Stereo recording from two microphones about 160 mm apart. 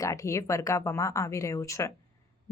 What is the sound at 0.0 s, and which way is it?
Speech, 20° left (ahead or behind).